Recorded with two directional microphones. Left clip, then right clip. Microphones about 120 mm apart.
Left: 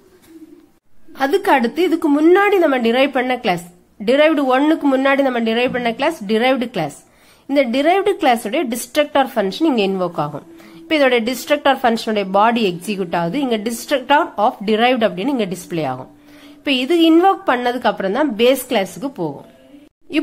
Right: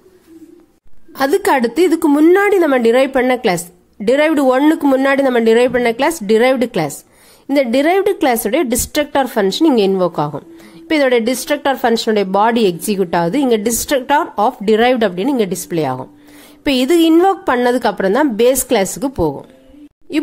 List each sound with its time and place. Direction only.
1.1 s a woman's voice: 40° right (ahead or behind)
16.6 s a woman's voice: 40° right (ahead or behind)